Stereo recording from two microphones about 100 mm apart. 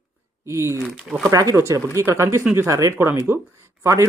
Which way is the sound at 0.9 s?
Centre (ahead or behind).